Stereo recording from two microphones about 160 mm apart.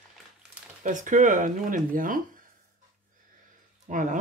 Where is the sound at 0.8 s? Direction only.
55° right (ahead or behind).